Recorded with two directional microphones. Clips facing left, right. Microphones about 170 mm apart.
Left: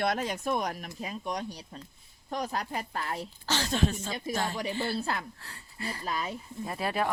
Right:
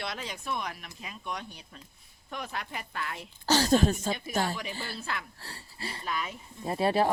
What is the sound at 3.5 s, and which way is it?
Speech, 40° right (ahead or behind).